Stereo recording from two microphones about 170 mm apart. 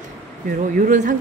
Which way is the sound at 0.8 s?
50° right (ahead or behind).